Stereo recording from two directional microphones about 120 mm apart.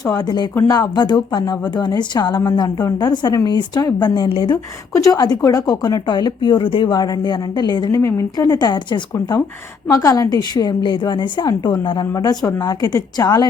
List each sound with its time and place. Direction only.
0.0 s speech: 30° left (ahead or behind)
4.9 s speech: 30° left (ahead or behind)